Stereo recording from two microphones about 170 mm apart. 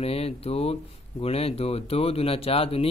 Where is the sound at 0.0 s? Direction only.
35° left (ahead or behind).